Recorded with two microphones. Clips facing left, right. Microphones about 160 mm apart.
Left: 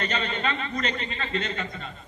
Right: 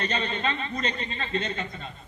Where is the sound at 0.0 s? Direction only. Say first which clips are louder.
Even; 30° right (ahead or behind).